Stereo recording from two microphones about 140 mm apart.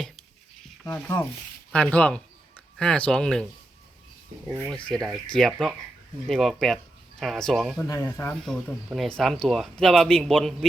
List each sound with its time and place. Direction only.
0.9 s speech: 10° left (ahead or behind)
4.4 s speech: 10° right (ahead or behind)
4.9 s speech: centre (ahead or behind)
7.9 s speech: 20° left (ahead or behind)
8.4 s speech: centre (ahead or behind)